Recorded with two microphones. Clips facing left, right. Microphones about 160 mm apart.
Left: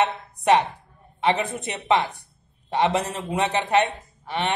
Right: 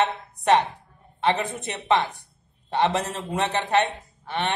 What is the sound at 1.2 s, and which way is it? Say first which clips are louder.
A man's voice: left 1 dB; 15° left (ahead or behind).